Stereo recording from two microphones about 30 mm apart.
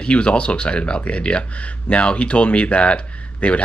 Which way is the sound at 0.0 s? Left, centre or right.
Left.